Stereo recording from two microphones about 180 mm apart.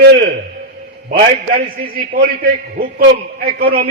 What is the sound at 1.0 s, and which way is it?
A man's voice, 50° right (ahead or behind).